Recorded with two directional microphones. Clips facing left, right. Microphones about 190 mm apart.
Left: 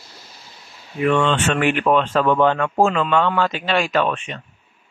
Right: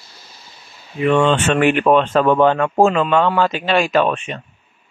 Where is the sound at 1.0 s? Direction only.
10° right (ahead or behind).